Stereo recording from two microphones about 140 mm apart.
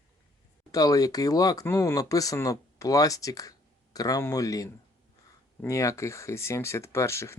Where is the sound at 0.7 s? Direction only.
25° left (ahead or behind).